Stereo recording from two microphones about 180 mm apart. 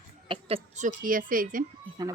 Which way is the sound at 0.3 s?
35° right (ahead or behind).